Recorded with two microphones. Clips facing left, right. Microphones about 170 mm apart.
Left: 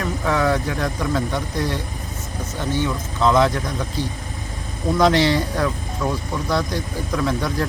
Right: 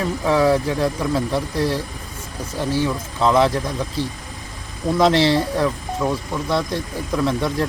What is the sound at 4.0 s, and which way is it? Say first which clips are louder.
Speech: right 1 dB; 30° right (ahead or behind).